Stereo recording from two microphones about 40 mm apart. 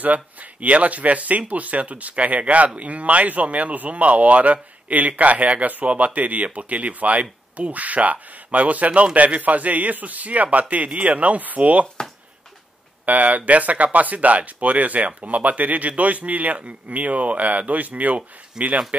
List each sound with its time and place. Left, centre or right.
0.0 s speech: right
13.0 s speech: right